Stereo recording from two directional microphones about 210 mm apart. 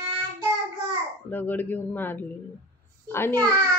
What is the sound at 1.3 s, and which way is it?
Speech, 10° left (ahead or behind).